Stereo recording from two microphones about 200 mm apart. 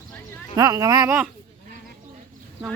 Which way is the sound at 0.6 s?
15° right (ahead or behind).